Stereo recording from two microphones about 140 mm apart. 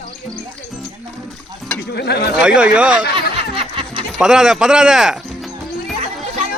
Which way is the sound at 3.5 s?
40° right (ahead or behind).